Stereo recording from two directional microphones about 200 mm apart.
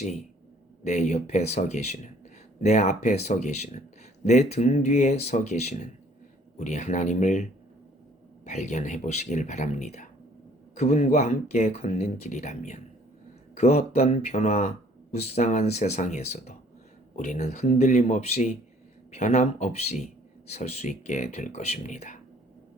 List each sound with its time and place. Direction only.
0.9 s speech: 35° left (ahead or behind)
8.4 s speech: 35° left (ahead or behind)